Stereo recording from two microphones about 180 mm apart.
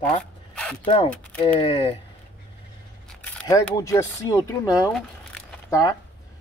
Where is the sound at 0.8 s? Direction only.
30° left (ahead or behind).